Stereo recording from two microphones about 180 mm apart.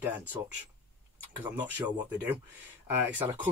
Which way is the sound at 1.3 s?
10° right (ahead or behind).